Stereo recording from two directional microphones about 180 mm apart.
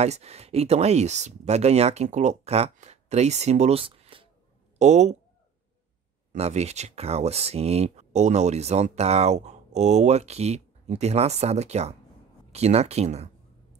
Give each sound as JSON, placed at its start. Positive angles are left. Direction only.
{"t": 0.0, "sound": "speech", "side_deg": -35}
{"t": 6.3, "sound": "speech", "side_deg": -35}